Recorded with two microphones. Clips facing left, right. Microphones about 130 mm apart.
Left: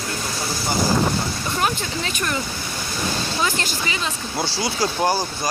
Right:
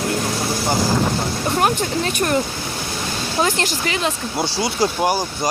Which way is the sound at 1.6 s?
60° right (ahead or behind).